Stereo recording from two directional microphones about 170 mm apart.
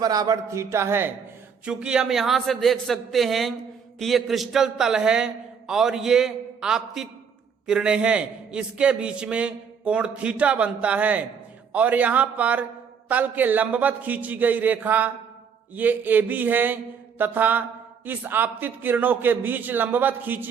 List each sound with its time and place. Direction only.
0.0 s mantra: 20° right (ahead or behind)
1.6 s a man's voice: 5° right (ahead or behind)
7.7 s mantra: 5° right (ahead or behind)